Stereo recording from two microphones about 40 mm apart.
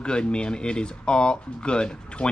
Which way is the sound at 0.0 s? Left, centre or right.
Left.